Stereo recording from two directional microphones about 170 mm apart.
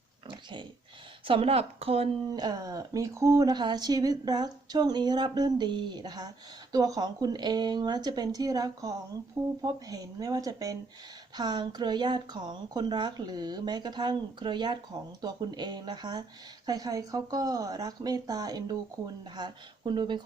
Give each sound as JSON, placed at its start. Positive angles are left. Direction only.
{"t": 1.3, "sound": "speech", "side_deg": -35}